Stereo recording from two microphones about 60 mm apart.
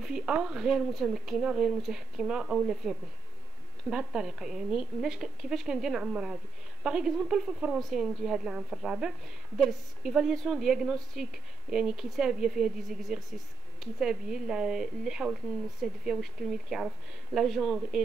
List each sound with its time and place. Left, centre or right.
0.0 s speech: centre